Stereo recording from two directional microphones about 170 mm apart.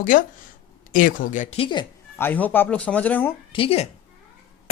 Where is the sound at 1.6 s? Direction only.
30° left (ahead or behind).